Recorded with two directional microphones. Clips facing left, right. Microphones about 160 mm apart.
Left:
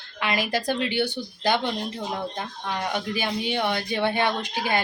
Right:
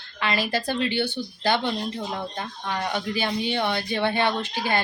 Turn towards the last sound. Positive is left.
turn(degrees=15)  # may be behind; listen again after turning